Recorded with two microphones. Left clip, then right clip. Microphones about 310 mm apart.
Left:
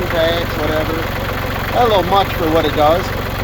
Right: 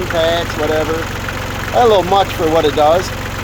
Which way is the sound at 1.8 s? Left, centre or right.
Right.